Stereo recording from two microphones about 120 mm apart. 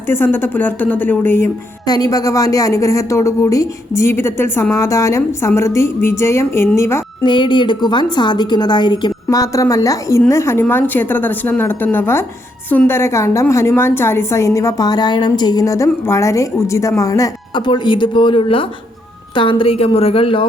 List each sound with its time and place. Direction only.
0.1 s a woman's voice: 20° left (ahead or behind)
1.9 s a woman's voice: 30° left (ahead or behind)
7.3 s a woman's voice: 40° left (ahead or behind)
17.5 s a woman's voice: 40° left (ahead or behind)